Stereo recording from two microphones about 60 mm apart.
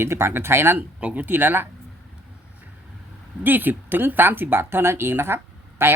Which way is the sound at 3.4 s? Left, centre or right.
Right.